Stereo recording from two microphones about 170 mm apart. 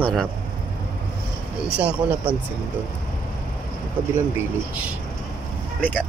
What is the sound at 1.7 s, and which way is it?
Speech, 5° right (ahead or behind).